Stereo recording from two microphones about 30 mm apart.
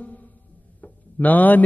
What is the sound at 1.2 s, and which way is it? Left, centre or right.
Speech, left.